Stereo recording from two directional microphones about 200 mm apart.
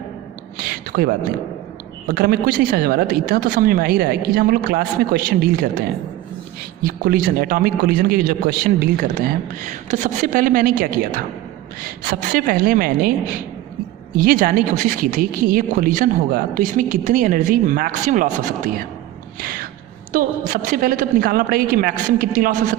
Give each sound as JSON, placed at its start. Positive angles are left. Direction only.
{"t": 0.7, "sound": "a sound", "side_deg": -50}
{"t": 2.0, "sound": "speech", "side_deg": -50}
{"t": 6.8, "sound": "speech", "side_deg": -45}
{"t": 14.2, "sound": "speech", "side_deg": -45}
{"t": 19.4, "sound": "a sound", "side_deg": -45}
{"t": 20.1, "sound": "speech", "side_deg": -45}